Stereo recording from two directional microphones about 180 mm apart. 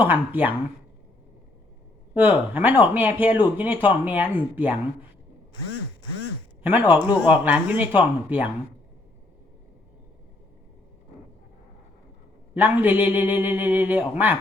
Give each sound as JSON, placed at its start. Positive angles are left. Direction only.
{"t": 0.0, "sound": "speech", "side_deg": -10}
{"t": 2.1, "sound": "speech", "side_deg": -10}
{"t": 6.6, "sound": "speech", "side_deg": -10}
{"t": 12.5, "sound": "speech", "side_deg": -10}